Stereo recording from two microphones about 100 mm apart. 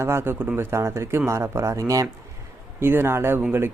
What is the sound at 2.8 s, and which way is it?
Speech, 20° right (ahead or behind).